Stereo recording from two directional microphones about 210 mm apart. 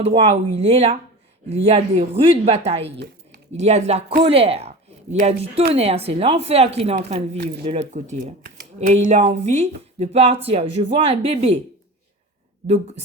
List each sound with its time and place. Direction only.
0.0 s speech: 30° right (ahead or behind)